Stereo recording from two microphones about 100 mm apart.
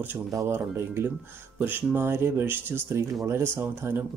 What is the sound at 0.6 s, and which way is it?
Speech, 20° right (ahead or behind).